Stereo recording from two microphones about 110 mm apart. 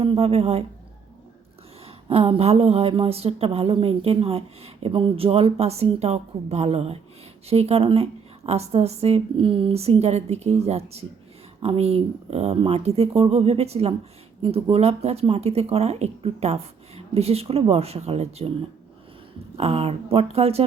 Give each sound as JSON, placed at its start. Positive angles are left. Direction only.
{"t": 0.0, "sound": "a woman's voice", "side_deg": -60}
{"t": 2.0, "sound": "a woman's voice", "side_deg": -60}
{"t": 19.5, "sound": "a woman's voice", "side_deg": -65}